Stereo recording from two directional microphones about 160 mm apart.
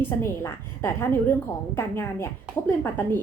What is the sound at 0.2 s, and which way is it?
A woman's voice, 15° left (ahead or behind).